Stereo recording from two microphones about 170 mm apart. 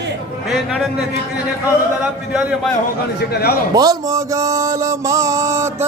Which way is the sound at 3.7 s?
20° right (ahead or behind).